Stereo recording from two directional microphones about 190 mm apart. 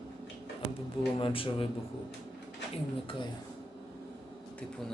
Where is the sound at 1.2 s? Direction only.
30° left (ahead or behind).